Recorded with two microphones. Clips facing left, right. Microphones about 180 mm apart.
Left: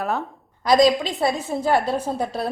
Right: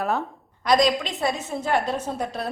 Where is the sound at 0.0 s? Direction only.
Centre (ahead or behind).